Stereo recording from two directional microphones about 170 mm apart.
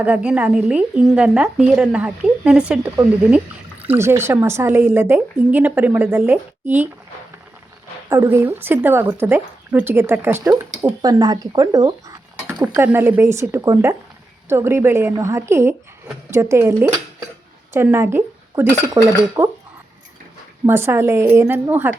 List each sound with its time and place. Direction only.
0.0 s speech: 10° right (ahead or behind)
8.1 s speech: 15° right (ahead or behind)
12.6 s speech: 10° right (ahead or behind)
20.7 s speech: 15° right (ahead or behind)